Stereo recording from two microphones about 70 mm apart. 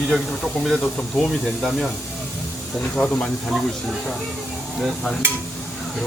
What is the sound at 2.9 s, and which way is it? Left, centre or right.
Speech, centre.